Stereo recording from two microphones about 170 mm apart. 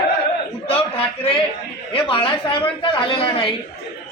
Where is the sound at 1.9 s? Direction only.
30° left (ahead or behind).